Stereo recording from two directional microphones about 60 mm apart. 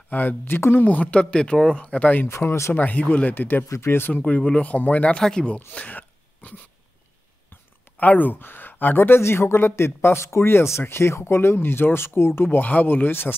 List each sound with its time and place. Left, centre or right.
0.1 s speech: left
0.6 s speech: left
0.8 s speech: left
2.2 s speech: left
2.7 s speech: left
3.8 s speech: left
4.1 s speech: left
5.7 s a sound: left
8.0 s speech: left